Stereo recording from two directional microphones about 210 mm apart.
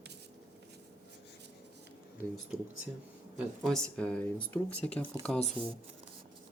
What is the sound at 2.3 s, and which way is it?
Speech, centre (ahead or behind).